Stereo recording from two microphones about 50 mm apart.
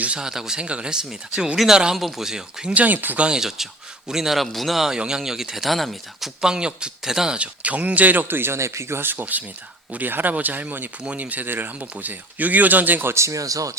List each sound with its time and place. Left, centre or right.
0.2 s speech: centre
2.7 s speech: right
3.2 s a man's voice: centre
4.9 s speech: centre
7.3 s speech: right
8.5 s speech: right
9.0 s speech: right
13.1 s speech: right